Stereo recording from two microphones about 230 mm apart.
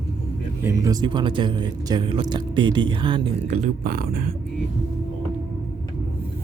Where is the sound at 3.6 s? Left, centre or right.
Right.